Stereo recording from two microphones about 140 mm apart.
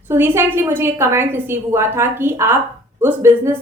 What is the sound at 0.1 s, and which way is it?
A woman's voice, 15° right (ahead or behind).